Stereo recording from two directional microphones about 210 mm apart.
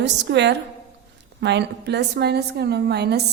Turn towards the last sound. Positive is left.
turn(degrees=-50)  # may be behind; listen again after turning